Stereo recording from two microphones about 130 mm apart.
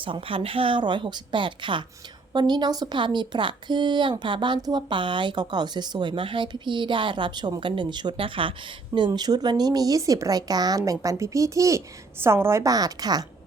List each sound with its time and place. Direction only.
0.0 s a woman's voice: 45° right (ahead or behind)